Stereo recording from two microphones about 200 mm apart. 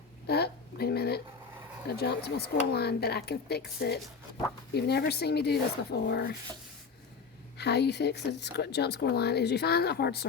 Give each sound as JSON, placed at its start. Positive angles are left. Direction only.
{"t": 0.3, "sound": "a sound", "side_deg": 55}
{"t": 1.9, "sound": "speech", "side_deg": 55}
{"t": 7.6, "sound": "speech", "side_deg": 55}